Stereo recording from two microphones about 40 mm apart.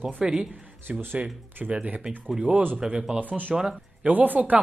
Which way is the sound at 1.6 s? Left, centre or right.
Right.